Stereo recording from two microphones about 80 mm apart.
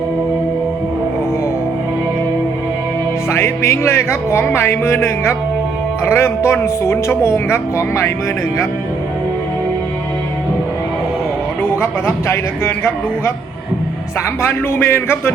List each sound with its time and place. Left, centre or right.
3.3 s speech: left
11.6 s speech: left
14.4 s a man's voice: left